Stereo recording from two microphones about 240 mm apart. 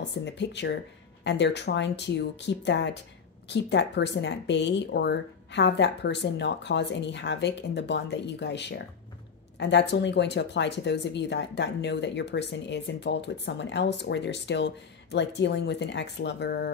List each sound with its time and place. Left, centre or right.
0.2 s speech: left